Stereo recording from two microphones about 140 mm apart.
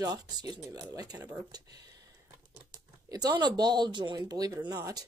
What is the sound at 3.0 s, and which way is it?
Speech, 25° right (ahead or behind).